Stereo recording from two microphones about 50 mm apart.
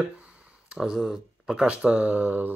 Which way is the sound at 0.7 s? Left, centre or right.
Centre.